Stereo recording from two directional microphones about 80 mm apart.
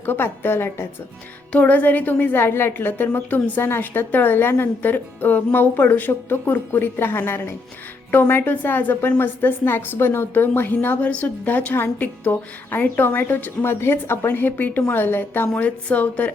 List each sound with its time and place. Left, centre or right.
0.0 s a woman's voice: left